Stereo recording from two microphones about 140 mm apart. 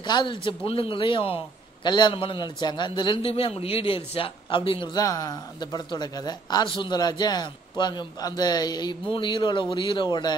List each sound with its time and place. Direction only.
0.0 s a man's voice: 35° left (ahead or behind)